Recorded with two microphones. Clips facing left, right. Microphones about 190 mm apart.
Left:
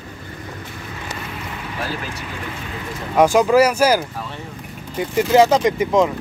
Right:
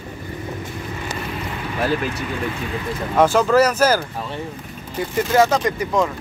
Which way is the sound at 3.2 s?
10° left (ahead or behind).